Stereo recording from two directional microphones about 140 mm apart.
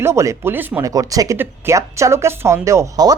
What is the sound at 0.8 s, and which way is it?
Speech, 25° right (ahead or behind).